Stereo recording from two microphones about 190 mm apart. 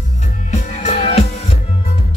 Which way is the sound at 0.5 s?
35° left (ahead or behind).